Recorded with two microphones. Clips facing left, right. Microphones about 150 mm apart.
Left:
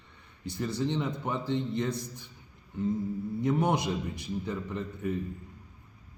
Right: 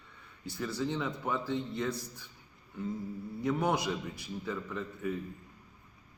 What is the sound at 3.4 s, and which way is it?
A man's voice, 20° left (ahead or behind).